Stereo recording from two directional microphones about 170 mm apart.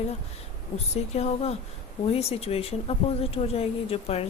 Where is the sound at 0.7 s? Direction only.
40° left (ahead or behind).